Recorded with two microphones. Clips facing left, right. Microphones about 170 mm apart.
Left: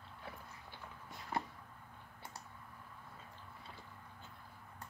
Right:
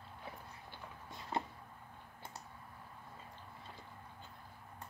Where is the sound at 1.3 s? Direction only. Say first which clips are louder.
Right 1 dB; 25° right (ahead or behind).